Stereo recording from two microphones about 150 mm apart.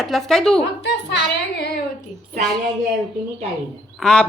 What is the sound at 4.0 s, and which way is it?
Speech, 5° left (ahead or behind).